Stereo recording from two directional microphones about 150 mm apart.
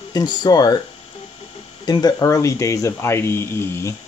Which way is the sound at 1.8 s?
25° left (ahead or behind).